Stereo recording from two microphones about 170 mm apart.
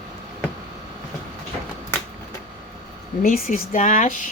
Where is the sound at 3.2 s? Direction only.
55° left (ahead or behind).